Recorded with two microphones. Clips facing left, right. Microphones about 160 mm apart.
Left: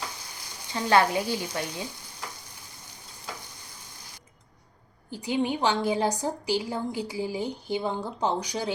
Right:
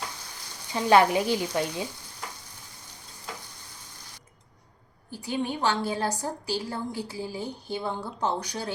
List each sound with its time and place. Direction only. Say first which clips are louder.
0.7 s speech: right 2 dB; 15° right (ahead or behind)
5.1 s a woman's voice: left 3 dB; 15° left (ahead or behind)